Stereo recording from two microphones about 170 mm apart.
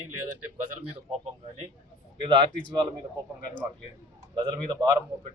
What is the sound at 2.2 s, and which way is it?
Speech, 30° right (ahead or behind).